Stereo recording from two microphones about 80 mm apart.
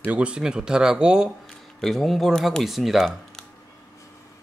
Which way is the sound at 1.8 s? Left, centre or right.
Centre.